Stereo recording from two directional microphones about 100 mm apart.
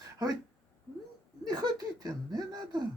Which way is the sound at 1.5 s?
40° right (ahead or behind).